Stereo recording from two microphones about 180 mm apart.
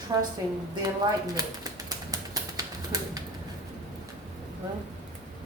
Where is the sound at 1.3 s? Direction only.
20° right (ahead or behind).